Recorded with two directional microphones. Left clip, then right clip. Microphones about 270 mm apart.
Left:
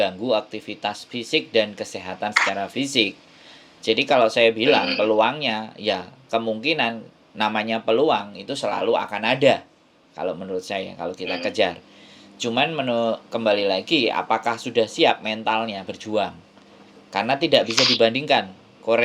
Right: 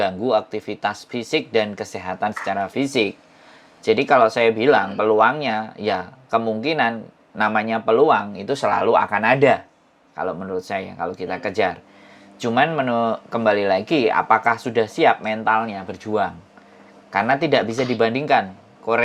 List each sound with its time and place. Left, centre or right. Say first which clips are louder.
0.3 s speech: right 3 dB; centre
8.3 s speech: right 5 dB; right; by 18.2 s centre